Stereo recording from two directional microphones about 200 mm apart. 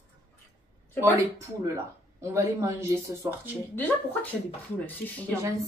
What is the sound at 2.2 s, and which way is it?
Speech, 15° right (ahead or behind).